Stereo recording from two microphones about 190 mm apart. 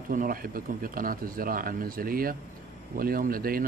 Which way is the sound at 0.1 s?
45° right (ahead or behind).